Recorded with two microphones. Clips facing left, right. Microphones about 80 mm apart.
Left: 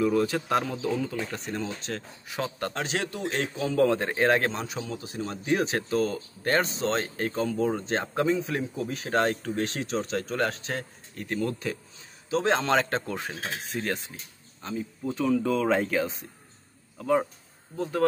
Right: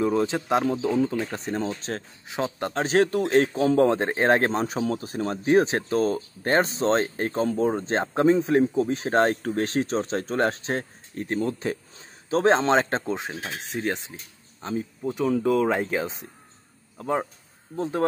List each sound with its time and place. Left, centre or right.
0.0 s speech: right
0.9 s speech: right
1.2 s speech: right
2.3 s speech: right
2.7 s a man's voice: right
12.5 s speech: right
15.4 s speech: centre